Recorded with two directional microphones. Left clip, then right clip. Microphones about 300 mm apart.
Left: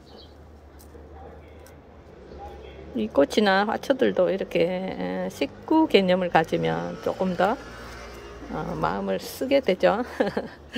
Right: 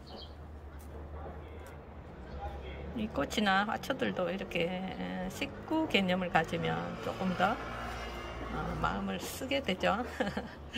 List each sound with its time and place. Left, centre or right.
3.0 s speech: centre
8.8 s speech: centre